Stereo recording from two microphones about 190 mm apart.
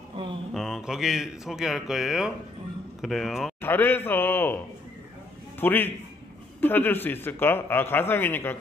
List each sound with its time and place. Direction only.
0.1 s a sound: 25° right (ahead or behind)
0.5 s speech: centre (ahead or behind)
3.6 s speech: 10° left (ahead or behind)
5.6 s speech: 10° left (ahead or behind)